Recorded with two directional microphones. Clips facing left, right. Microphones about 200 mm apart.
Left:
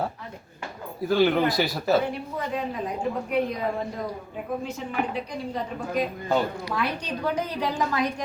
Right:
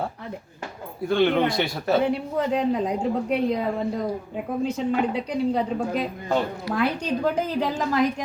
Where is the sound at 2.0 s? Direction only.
75° right (ahead or behind).